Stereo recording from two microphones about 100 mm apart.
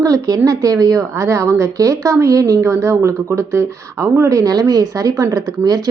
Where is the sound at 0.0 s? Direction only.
35° right (ahead or behind).